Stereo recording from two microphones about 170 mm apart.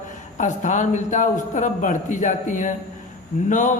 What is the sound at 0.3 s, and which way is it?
Speech, 45° left (ahead or behind).